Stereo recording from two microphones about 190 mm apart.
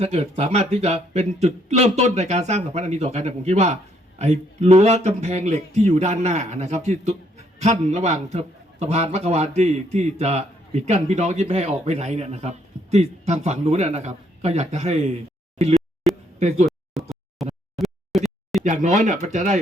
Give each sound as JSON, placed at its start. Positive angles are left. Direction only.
{"t": 0.0, "sound": "a man's voice", "side_deg": -35}
{"t": 16.6, "sound": "a sound", "side_deg": 0}
{"t": 18.6, "sound": "a man's voice", "side_deg": -40}